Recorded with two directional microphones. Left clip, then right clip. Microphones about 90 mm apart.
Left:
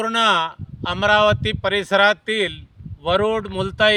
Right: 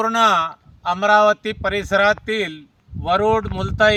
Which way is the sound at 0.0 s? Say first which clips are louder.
Right 2 dB; 50° left (ahead or behind).